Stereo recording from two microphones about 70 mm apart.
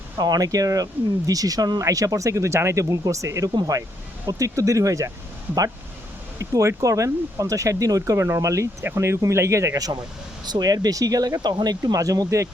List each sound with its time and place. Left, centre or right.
0.2 s speech: right
1.8 s speech: right
3.5 s speech: right
4.3 s speech: right
6.4 s speech: right
10.4 s speech: right